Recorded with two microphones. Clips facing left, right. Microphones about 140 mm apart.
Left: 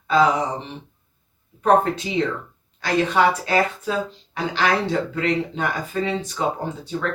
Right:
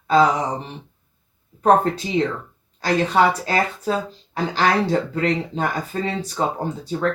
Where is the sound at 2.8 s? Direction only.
35° right (ahead or behind).